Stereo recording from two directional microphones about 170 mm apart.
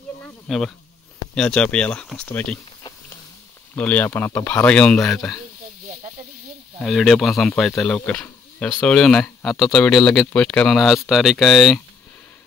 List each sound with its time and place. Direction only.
0.5 s speech: centre (ahead or behind)
3.7 s speech: 10° left (ahead or behind)
5.9 s snake: 50° right (ahead or behind)
6.8 s speech: centre (ahead or behind)